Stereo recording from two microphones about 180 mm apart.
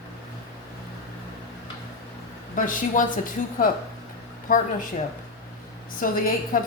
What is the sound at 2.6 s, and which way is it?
A woman's voice, 50° left (ahead or behind).